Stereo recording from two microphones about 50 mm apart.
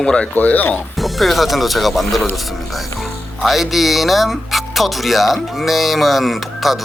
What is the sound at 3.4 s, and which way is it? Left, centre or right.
Speech, centre.